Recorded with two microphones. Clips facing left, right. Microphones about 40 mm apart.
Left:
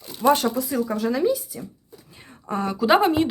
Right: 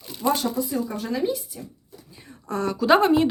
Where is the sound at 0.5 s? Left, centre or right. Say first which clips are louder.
Left 2 dB; left.